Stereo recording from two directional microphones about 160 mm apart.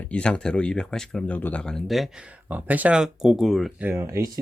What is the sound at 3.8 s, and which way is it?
Speech, 15° right (ahead or behind).